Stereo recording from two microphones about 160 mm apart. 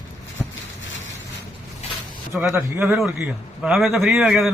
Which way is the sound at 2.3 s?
5° right (ahead or behind).